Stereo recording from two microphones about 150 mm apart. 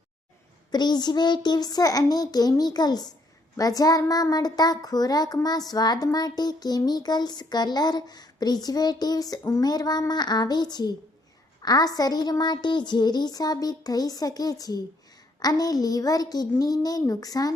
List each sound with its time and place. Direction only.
0.7 s a child's voice: 30° left (ahead or behind)